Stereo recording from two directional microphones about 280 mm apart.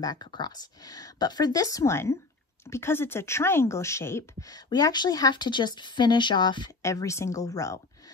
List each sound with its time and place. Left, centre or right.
0.0 s speech: centre